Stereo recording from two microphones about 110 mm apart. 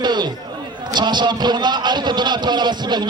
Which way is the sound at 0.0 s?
40° right (ahead or behind).